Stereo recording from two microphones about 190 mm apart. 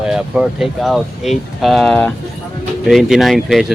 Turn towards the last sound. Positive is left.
turn(degrees=0)  # may be behind; listen again after turning